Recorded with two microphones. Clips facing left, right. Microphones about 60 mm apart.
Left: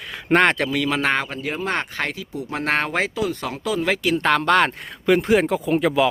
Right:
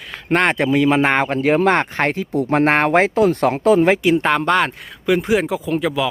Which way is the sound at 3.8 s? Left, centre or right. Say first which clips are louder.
Right 5 dB; right.